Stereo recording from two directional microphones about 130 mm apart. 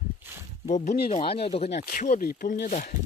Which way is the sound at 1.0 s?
45° left (ahead or behind).